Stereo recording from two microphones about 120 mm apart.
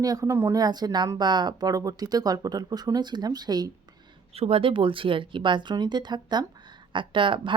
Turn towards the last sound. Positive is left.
turn(degrees=-45)  # may be behind; listen again after turning